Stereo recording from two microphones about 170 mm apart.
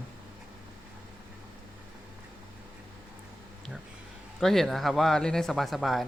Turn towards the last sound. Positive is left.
turn(degrees=0)  # may be behind; listen again after turning